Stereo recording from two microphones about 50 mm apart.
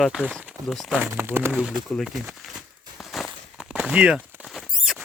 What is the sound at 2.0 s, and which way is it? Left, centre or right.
Crumpling, centre.